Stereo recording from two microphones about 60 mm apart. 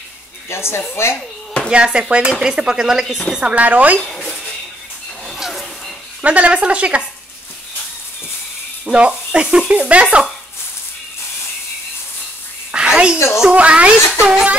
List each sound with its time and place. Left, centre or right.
0.5 s speech: left
1.1 s a sound: centre
1.7 s speech: centre
4.0 s speech: centre
5.2 s music: centre
6.2 s speech: right
8.8 s speech: centre
12.7 s a sound: centre
13.4 s speech: centre